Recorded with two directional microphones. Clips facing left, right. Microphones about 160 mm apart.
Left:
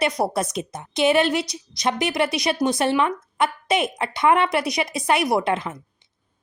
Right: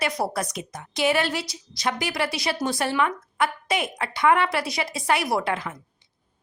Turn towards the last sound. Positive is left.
turn(degrees=20)  # may be behind; listen again after turning